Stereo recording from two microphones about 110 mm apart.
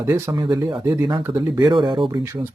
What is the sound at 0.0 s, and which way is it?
Speech, 20° right (ahead or behind).